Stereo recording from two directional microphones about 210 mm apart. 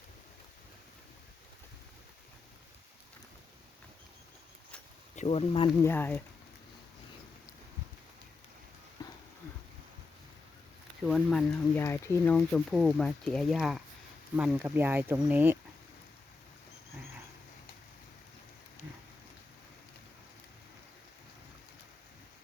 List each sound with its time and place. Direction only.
5.1 s speech: 30° left (ahead or behind)
5.8 s speech: 10° left (ahead or behind)
9.0 s horse: 20° left (ahead or behind)
11.0 s speech: centre (ahead or behind)